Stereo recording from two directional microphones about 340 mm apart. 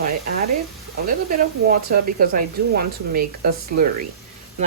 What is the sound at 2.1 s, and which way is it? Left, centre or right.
Speech, right.